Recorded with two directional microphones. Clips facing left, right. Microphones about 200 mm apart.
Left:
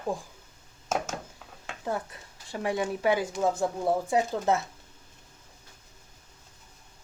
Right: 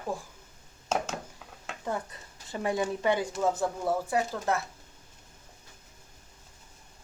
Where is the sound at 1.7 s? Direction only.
Centre (ahead or behind); by 4.6 s 20° left (ahead or behind).